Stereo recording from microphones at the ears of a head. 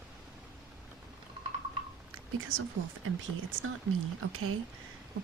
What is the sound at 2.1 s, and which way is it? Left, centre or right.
Speech, right.